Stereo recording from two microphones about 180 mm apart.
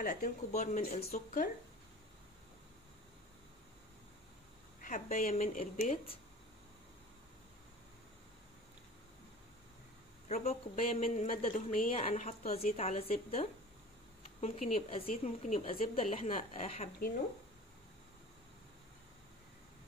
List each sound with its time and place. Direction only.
0.0 s speech: 45° left (ahead or behind)
4.8 s speech: 45° left (ahead or behind)
10.2 s a woman's voice: 35° left (ahead or behind)